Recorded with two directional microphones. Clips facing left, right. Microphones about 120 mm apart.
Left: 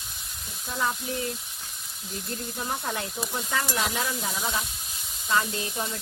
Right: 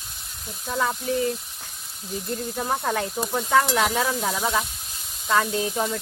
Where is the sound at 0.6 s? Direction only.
60° right (ahead or behind).